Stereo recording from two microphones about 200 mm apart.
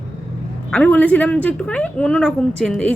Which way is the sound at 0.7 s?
5° left (ahead or behind).